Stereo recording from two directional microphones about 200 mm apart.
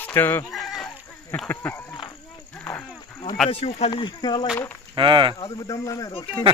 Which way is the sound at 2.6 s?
15° left (ahead or behind).